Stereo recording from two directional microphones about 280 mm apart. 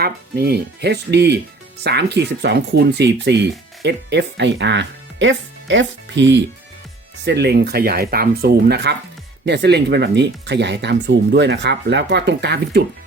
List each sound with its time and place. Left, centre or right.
0.0 s speech: right